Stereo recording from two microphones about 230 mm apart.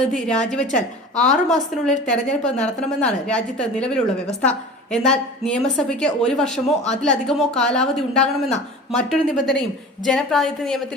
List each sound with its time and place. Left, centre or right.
0.0 s a woman's voice: centre
6.7 s speech: left
7.0 s a woman's voice: centre